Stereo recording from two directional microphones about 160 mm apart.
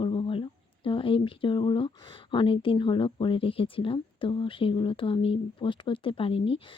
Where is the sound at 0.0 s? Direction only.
30° left (ahead or behind).